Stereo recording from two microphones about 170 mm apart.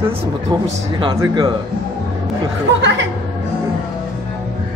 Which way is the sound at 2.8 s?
90° right.